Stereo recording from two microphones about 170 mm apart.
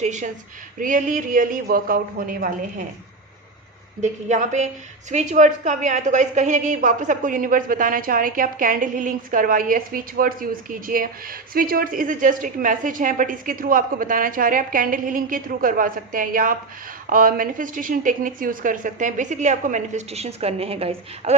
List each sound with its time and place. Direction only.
0.0 s a woman's voice: 45° right (ahead or behind)
4.0 s a woman's voice: 45° right (ahead or behind)